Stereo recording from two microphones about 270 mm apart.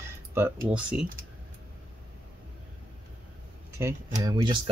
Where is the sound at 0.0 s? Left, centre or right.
Centre.